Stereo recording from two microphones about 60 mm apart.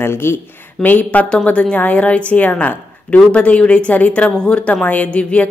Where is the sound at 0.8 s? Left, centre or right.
Left.